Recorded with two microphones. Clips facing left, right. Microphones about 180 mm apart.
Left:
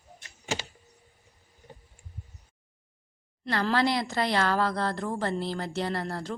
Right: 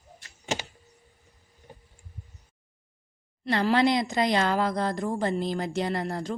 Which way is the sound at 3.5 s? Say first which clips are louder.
Right 3 dB; 20° right (ahead or behind).